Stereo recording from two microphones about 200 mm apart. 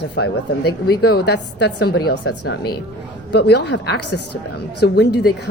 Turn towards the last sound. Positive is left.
turn(degrees=55)  # may be behind; listen again after turning